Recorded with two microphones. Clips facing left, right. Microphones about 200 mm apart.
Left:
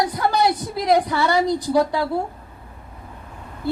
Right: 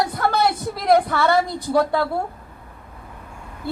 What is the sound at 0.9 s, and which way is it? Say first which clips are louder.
Speech: right 2 dB; 55° right (ahead or behind).